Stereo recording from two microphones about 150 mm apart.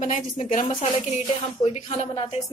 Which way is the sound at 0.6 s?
40° left (ahead or behind).